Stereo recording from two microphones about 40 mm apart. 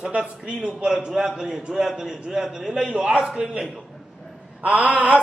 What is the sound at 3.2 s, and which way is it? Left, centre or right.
Speech, centre.